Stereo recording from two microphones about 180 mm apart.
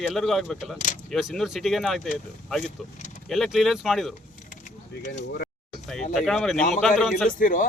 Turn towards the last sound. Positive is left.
turn(degrees=50)  # may be behind; listen again after turning